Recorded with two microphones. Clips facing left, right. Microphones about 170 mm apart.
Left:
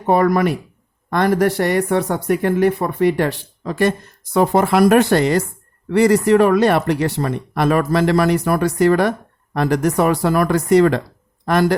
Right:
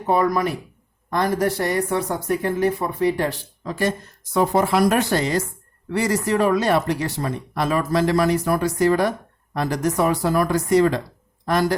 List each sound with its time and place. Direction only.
0.1 s speech: 65° left (ahead or behind)